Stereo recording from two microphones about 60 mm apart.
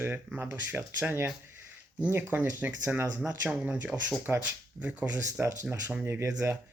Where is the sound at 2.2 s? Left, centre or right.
Right.